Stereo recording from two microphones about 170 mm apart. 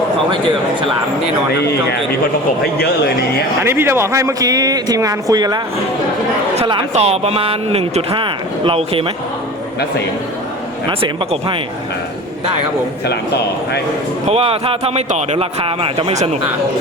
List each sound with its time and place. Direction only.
3.6 s speech: 15° right (ahead or behind)
6.6 s speech: 35° right (ahead or behind)
10.8 s speech: 30° right (ahead or behind)
13.1 s speech: 75° left (ahead or behind)
14.3 s speech: 35° right (ahead or behind)